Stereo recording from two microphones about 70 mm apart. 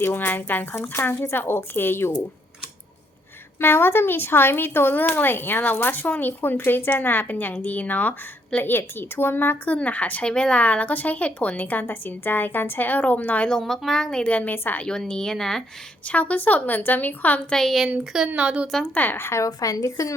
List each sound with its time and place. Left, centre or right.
0.0 s speech: left
3.6 s speech: left
8.6 s speech: left
13.5 s speech: centre
14.3 s speech: left
14.8 s speech: centre
16.0 s speech: centre
17.5 s a woman's voice: centre
17.8 s speech: centre
18.9 s speech: left
19.2 s speech: left
19.5 s speech: left